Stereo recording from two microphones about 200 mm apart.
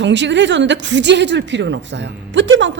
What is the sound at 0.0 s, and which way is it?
A woman's voice, 60° right (ahead or behind).